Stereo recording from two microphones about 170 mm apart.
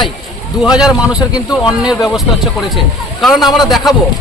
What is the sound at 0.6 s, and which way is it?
Speech, 5° right (ahead or behind).